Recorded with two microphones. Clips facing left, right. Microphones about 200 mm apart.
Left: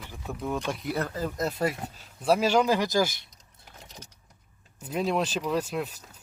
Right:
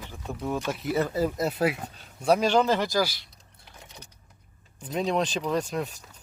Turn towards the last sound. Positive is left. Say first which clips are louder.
# right 1 dB
turn(degrees=5)  # may be behind; listen again after turning